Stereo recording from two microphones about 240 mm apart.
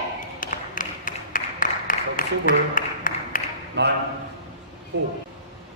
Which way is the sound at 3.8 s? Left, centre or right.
Right.